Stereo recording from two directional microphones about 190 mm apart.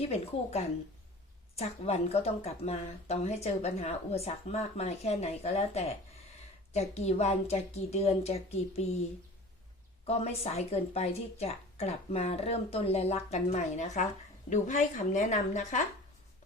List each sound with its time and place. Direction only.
0.0 s speech: 35° left (ahead or behind)
10.1 s speech: 35° left (ahead or behind)